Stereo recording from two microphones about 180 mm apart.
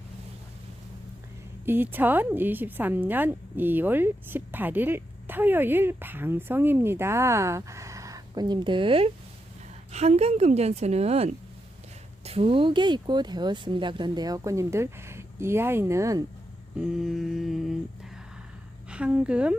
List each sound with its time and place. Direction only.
1.6 s a woman's voice: 10° right (ahead or behind)
16.8 s mantra: 5° right (ahead or behind)
18.9 s a woman's voice: 5° right (ahead or behind)